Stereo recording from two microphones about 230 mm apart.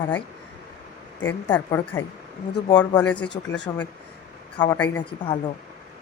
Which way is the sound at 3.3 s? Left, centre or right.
Left.